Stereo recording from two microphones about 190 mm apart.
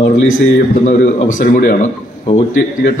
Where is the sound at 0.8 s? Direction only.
45° left (ahead or behind).